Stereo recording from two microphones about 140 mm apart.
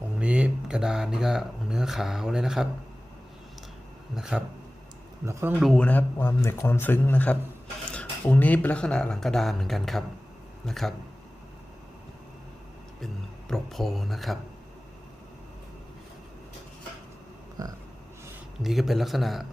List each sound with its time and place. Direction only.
0.2 s speech: 10° right (ahead or behind)
4.1 s speech: 5° right (ahead or behind)
5.2 s speech: 20° right (ahead or behind)
5.5 s speech: centre (ahead or behind)
5.8 s speech: 10° left (ahead or behind)
13.5 s speech: centre (ahead or behind)
17.6 s speech: 25° right (ahead or behind)
18.6 s speech: centre (ahead or behind)